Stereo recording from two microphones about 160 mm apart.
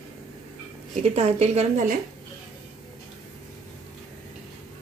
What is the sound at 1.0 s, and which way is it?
Speech, 40° right (ahead or behind).